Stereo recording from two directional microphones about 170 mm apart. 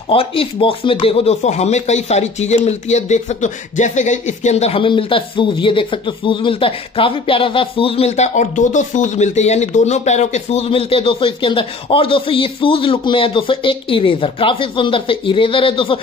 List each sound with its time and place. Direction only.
0.1 s speech: 35° left (ahead or behind)